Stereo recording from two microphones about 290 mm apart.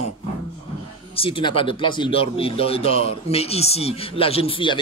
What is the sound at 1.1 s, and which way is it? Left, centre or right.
A man's voice, centre.